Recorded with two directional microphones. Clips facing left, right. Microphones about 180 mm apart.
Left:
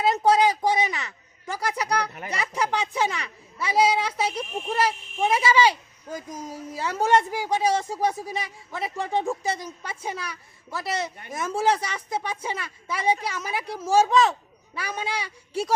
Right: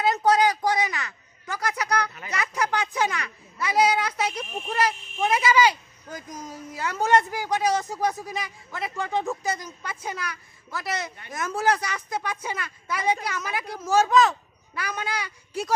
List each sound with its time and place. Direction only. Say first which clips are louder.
0.3 s a sound: left 1 dB; 25° left (ahead or behind)
2.3 s speech: even; 30° left (ahead or behind)
4.4 s speech: left 1 dB; 5° left (ahead or behind)
4.9 s a woman's voice: left 1 dB; 30° left (ahead or behind)